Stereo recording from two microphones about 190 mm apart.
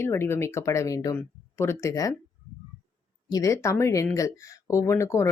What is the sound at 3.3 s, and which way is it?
Speech, 15° left (ahead or behind).